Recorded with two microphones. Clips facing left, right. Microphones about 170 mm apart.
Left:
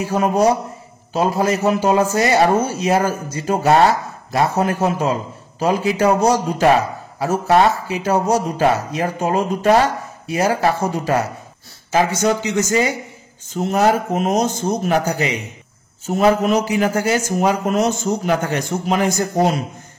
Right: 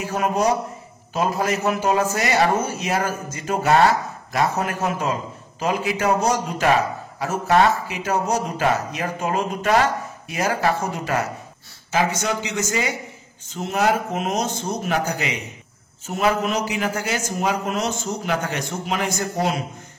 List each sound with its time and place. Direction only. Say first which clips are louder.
0.0 s a man's voice: left 5 dB; 35° left (ahead or behind)